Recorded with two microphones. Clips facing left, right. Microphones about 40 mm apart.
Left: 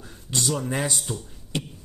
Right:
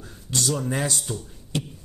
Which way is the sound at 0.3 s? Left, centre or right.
Left.